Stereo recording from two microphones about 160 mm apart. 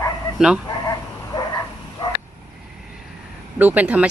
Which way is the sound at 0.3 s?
5° right (ahead or behind).